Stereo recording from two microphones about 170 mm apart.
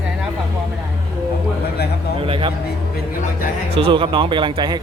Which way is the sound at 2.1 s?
35° right (ahead or behind).